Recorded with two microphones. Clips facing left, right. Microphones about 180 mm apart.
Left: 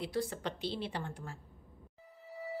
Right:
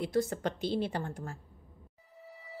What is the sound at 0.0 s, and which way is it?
A woman's voice, 45° right (ahead or behind).